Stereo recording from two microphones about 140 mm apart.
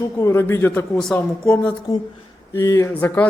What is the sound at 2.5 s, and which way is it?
Speech, 20° left (ahead or behind).